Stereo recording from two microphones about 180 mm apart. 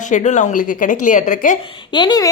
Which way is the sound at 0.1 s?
40° left (ahead or behind).